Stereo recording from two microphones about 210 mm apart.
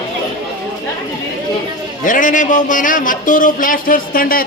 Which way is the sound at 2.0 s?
40° left (ahead or behind).